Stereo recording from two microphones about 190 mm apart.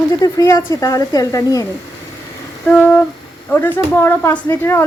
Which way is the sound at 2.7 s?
10° left (ahead or behind).